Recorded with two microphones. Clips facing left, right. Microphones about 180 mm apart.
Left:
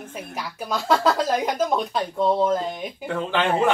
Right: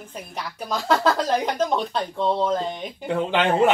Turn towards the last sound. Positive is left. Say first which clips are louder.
# right 2 dB
turn(degrees=-15)  # may be behind; listen again after turning